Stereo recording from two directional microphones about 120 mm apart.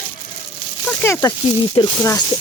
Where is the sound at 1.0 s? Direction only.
20° left (ahead or behind).